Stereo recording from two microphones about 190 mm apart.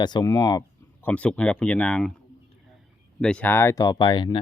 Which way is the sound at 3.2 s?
5° left (ahead or behind).